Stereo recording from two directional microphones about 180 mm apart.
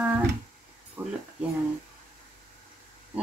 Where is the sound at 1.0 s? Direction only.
10° right (ahead or behind).